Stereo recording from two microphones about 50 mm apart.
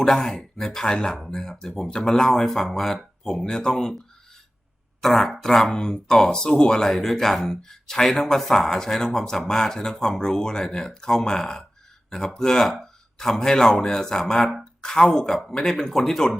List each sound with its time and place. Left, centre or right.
0.0 s a man's voice: centre